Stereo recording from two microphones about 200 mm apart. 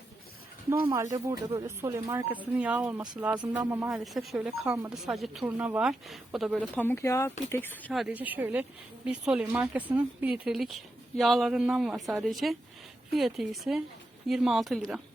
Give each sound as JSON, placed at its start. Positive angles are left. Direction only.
{"t": 0.9, "sound": "speech", "side_deg": -15}
{"t": 3.8, "sound": "a woman's voice", "side_deg": 0}
{"t": 8.0, "sound": "a woman's voice", "side_deg": -10}